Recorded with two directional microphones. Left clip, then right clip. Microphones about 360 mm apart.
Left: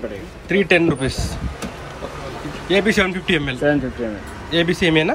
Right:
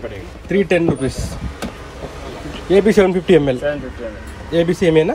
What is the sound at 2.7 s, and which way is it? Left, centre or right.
Speech, centre.